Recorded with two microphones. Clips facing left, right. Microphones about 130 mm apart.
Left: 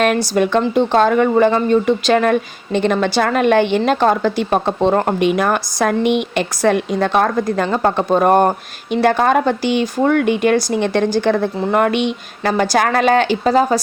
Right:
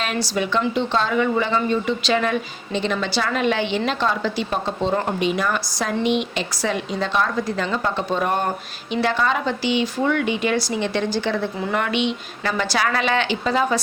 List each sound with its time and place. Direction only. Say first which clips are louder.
0.0 s speech: left 9 dB; 50° left (ahead or behind)